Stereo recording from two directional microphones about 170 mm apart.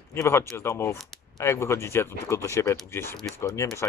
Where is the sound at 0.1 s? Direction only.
15° left (ahead or behind).